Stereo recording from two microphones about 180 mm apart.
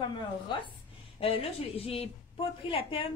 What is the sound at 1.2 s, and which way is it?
A woman's voice, 30° left (ahead or behind).